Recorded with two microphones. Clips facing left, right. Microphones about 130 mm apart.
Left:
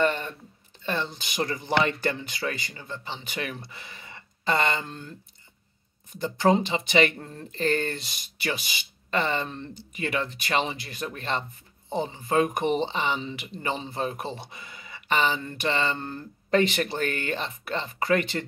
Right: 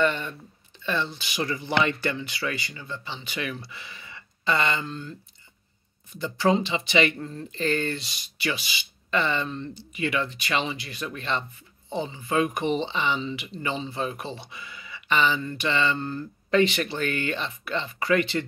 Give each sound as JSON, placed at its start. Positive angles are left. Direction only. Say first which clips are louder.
{"t": 0.0, "sound": "a sound", "louder": "even", "side_deg": 40}
{"t": 0.8, "sound": "speech", "louder": "right 1 dB", "side_deg": 45}
{"t": 6.1, "sound": "speech", "louder": "left 1 dB", "side_deg": 50}